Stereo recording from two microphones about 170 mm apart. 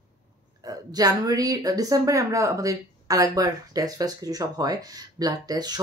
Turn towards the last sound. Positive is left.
turn(degrees=-25)  # may be behind; listen again after turning